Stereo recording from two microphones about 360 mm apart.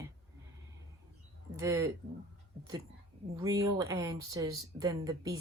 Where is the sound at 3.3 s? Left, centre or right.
Centre.